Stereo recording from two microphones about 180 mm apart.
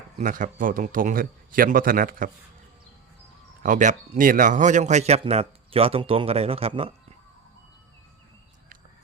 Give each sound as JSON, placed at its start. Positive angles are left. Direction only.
{"t": 0.2, "sound": "a man's voice", "side_deg": -45}
{"t": 3.6, "sound": "a man's voice", "side_deg": -45}